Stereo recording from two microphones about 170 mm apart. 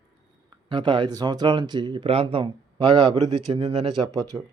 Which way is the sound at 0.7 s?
30° right (ahead or behind).